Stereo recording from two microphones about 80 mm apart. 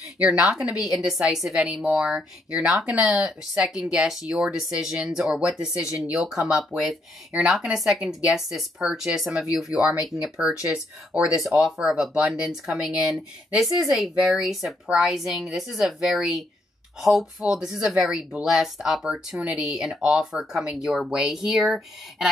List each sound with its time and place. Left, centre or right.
0.2 s a woman's voice: centre